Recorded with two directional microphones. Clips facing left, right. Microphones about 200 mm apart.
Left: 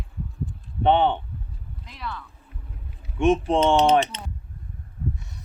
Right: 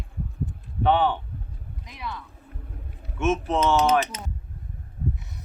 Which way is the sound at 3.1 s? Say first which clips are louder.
Left 4 dB; 30° left (ahead or behind).